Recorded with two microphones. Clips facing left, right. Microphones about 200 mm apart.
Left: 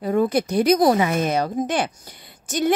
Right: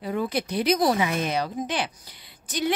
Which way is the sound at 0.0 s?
45° left (ahead or behind).